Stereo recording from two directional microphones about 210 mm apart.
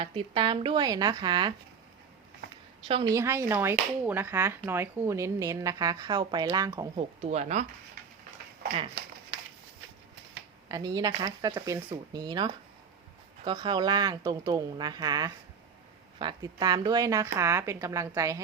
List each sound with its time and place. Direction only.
0.0 s speech: 25° right (ahead or behind)
2.8 s speech: 25° right (ahead or behind)
6.9 s speech: 30° right (ahead or behind)
10.7 s speech: 15° right (ahead or behind)